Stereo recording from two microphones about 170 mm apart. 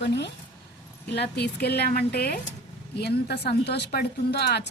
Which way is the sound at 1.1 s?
80° left.